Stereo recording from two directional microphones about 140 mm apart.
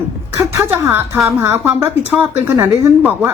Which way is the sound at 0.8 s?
20° right (ahead or behind).